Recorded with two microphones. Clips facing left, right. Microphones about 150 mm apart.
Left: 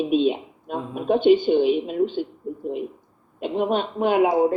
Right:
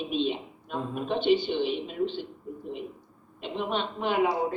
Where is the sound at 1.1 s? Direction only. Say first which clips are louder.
Left 9 dB; 45° left (ahead or behind).